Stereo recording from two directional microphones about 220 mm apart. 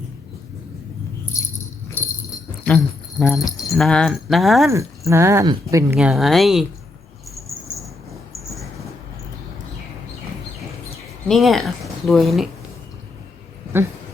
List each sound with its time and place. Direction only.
1.3 s dog: 15° left (ahead or behind)
2.0 s jingle bell: 10° left (ahead or behind)
2.6 s speech: 10° left (ahead or behind)
4.7 s speech: 15° right (ahead or behind)
11.3 s speech: centre (ahead or behind)